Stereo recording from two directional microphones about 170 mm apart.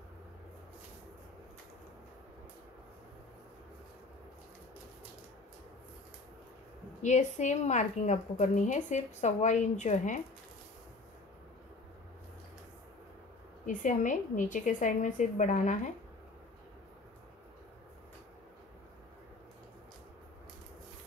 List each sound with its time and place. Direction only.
7.0 s a woman's voice: 45° left (ahead or behind)
13.7 s a woman's voice: 50° left (ahead or behind)